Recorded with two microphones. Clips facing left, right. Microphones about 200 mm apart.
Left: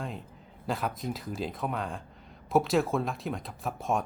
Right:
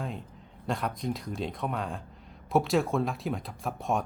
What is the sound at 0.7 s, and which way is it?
Speech, centre (ahead or behind).